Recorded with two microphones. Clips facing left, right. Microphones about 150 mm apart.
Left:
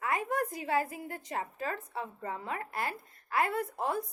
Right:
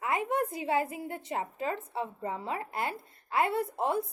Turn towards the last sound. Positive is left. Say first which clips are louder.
# right 3 dB
turn(degrees=-25)  # may be behind; listen again after turning